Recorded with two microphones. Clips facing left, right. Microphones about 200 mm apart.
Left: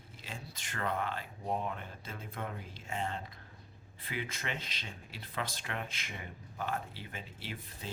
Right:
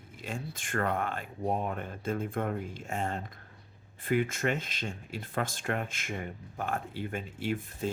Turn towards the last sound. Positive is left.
turn(degrees=-50)  # may be behind; listen again after turning